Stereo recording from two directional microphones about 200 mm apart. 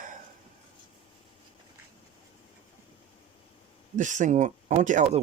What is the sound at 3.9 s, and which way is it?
Speech, 40° right (ahead or behind).